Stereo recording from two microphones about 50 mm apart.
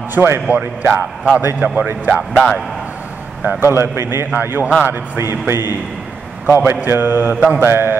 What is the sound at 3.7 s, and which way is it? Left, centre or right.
Speech, right.